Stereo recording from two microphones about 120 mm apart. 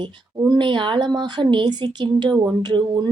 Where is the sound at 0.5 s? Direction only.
40° right (ahead or behind).